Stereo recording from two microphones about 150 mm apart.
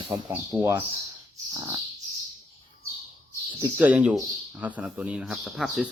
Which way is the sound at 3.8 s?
10° right (ahead or behind).